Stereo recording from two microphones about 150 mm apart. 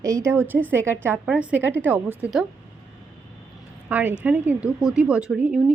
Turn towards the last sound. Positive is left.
turn(degrees=-10)  # may be behind; listen again after turning